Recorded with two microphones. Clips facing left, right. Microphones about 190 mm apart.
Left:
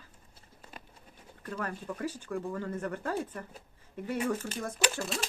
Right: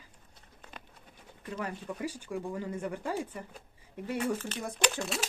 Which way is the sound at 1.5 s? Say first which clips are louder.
Even; 10° right (ahead or behind).